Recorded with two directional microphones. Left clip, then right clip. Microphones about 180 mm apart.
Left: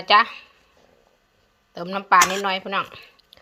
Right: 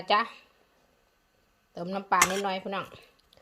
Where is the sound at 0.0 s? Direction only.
Centre (ahead or behind).